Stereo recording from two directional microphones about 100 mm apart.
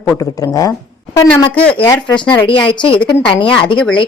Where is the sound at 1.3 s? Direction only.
15° left (ahead or behind).